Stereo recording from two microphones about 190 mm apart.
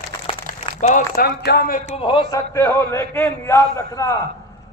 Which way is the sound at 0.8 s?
40° left (ahead or behind).